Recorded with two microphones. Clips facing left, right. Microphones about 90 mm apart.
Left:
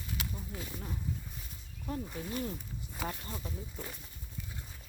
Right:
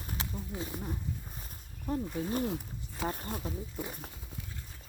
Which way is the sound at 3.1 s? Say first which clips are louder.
Right 5 dB; 40° right (ahead or behind).